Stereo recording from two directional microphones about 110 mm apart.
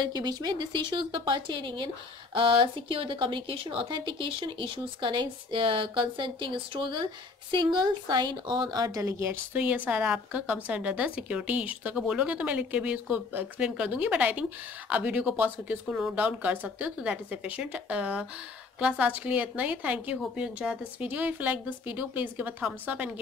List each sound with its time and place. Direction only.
0.0 s a woman's voice: 40° right (ahead or behind); by 23.1 s 15° right (ahead or behind)